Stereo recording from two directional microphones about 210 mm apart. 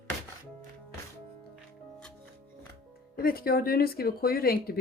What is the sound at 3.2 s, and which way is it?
Speech, 45° left (ahead or behind).